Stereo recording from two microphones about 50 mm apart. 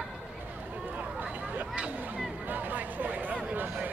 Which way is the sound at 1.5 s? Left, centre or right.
Right.